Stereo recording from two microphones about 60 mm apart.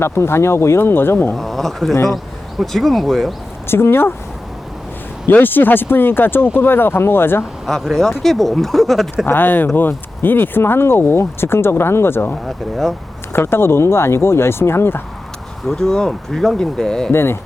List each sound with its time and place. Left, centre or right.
0.0 s speech: left
1.4 s speech: centre
3.7 s speech: left
5.3 s speech: left
7.7 s speech: centre
9.2 s speech: left
12.5 s speech: centre
13.3 s speech: left
15.6 s speech: centre
17.1 s speech: left